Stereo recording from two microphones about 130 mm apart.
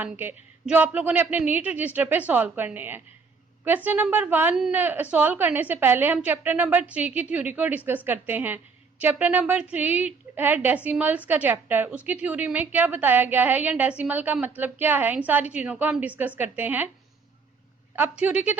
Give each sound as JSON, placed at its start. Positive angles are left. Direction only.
{"t": 0.0, "sound": "a woman's voice", "side_deg": -15}
{"t": 18.2, "sound": "a woman's voice", "side_deg": -10}